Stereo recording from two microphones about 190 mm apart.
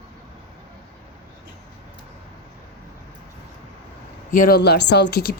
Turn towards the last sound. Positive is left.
turn(degrees=55)  # may be behind; listen again after turning